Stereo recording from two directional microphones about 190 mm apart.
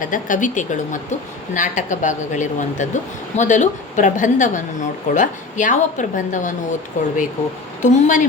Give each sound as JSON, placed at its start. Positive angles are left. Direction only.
{"t": 0.0, "sound": "a woman's voice", "side_deg": 45}